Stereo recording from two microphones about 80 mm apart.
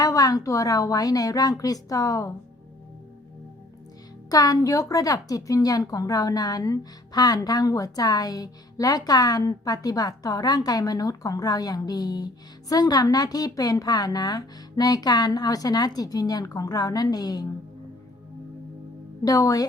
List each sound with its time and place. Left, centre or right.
0.0 s a woman's voice: left
4.3 s a woman's voice: left
19.2 s a woman's voice: left